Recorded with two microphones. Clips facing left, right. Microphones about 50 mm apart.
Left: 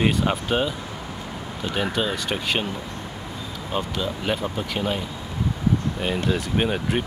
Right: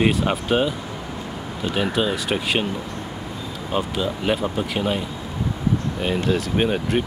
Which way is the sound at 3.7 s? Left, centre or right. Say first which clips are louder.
Right 3 dB; centre.